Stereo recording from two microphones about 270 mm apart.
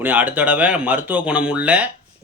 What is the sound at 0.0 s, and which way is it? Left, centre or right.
Speech, centre.